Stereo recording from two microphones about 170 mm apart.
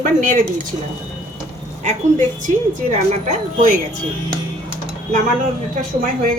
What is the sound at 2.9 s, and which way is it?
Speech, 40° right (ahead or behind).